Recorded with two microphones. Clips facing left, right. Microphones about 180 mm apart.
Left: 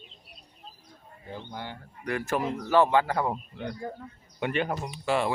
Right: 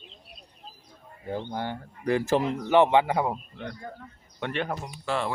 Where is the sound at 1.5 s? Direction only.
50° right (ahead or behind).